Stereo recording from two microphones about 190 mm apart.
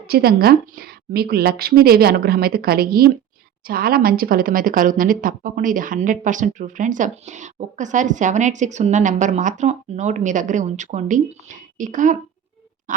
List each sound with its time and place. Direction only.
0.1 s a woman's voice: 55° right (ahead or behind)